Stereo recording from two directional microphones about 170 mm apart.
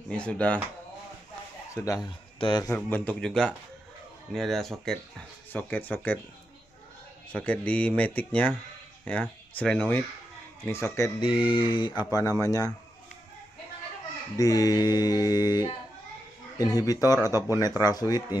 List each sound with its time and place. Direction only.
0.1 s speech: 5° left (ahead or behind)
1.7 s speech: 20° left (ahead or behind)
2.7 s speech: 5° left (ahead or behind)
5.5 s speech: 10° left (ahead or behind)
7.3 s speech: 10° left (ahead or behind)
11.1 s a man's voice: 30° left (ahead or behind)
14.3 s a man's voice: 20° left (ahead or behind)